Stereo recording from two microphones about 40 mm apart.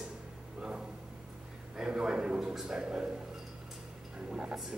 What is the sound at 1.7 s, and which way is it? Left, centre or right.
A man's voice, right.